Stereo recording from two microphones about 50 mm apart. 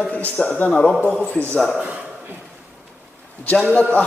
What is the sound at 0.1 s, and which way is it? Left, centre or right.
A man's voice, left.